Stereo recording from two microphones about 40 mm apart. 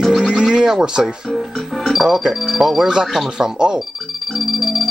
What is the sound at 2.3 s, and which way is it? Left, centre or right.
Music, centre.